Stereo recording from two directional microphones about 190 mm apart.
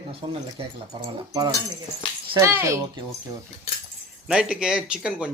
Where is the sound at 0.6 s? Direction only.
25° right (ahead or behind).